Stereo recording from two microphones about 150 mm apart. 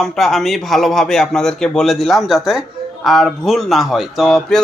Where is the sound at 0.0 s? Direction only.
Centre (ahead or behind).